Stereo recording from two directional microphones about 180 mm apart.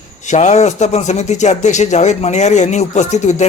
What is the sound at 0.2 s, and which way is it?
Speech, 40° left (ahead or behind).